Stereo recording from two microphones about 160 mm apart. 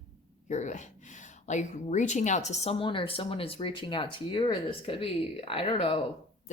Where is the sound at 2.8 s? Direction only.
30° left (ahead or behind).